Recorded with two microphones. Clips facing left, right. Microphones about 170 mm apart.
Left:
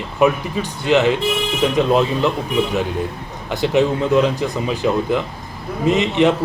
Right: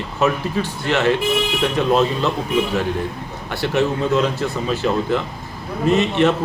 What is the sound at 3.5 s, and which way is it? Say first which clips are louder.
A man's voice: left 3 dB; 15° left (ahead or behind).